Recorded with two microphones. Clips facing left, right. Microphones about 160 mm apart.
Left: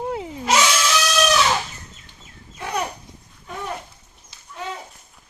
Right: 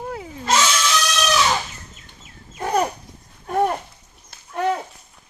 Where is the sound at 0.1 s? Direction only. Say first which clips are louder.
Left 4 dB; 20° left (ahead or behind).